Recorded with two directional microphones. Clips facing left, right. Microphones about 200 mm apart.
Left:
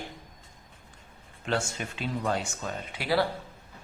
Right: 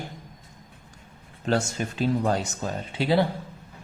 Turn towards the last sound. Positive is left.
turn(degrees=-25)  # may be behind; listen again after turning